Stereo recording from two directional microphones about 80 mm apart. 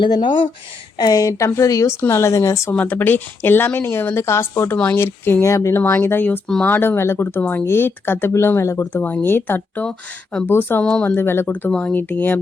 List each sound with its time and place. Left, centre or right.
0.0 s speech: left
0.9 s a woman's voice: left
2.7 s speech: left
5.8 s speech: left
9.0 s speech: left